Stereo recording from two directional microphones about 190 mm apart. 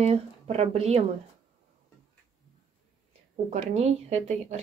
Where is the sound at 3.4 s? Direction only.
35° right (ahead or behind).